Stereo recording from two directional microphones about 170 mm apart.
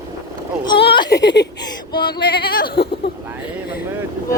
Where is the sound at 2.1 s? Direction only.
70° left (ahead or behind).